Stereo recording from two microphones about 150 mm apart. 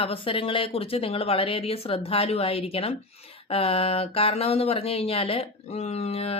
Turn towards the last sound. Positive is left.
turn(degrees=40)  # may be behind; listen again after turning